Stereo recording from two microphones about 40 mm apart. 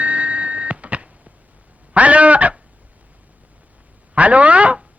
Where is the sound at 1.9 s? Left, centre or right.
Right.